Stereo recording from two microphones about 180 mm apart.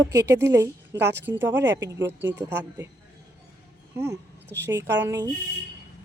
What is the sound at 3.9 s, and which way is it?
A woman's voice, 15° right (ahead or behind).